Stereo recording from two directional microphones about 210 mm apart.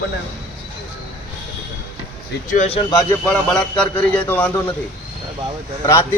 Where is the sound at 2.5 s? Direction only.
30° left (ahead or behind).